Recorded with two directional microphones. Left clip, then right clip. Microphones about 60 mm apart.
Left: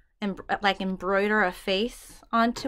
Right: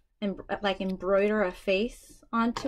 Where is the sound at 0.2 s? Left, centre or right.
Left.